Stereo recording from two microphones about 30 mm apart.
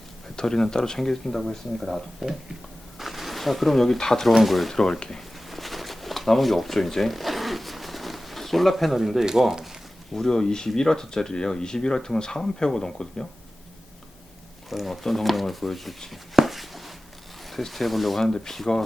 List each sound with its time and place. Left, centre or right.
0.3 s speech: left; by 2.0 s centre
2.2 s speech: centre
3.0 s a sound: centre
3.8 s speech: centre
4.7 s speech: centre
5.5 s a sound: centre
9.2 s speech: centre
10.2 s speech: left
14.7 s speech: centre
16.3 s a sound: centre
17.7 s speech: centre
18.3 s speech: centre